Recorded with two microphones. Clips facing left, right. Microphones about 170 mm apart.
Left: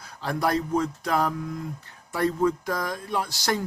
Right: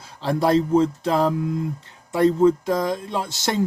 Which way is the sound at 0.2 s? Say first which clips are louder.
Right 6 dB; 25° right (ahead or behind).